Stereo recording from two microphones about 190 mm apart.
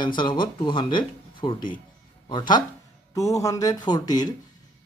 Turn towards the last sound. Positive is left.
turn(degrees=20)  # may be behind; listen again after turning